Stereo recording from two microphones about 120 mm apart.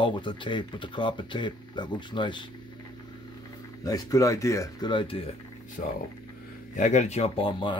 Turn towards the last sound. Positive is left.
turn(degrees=45)  # may be behind; listen again after turning